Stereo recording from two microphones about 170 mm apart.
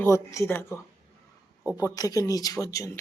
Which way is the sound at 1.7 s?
20° left (ahead or behind).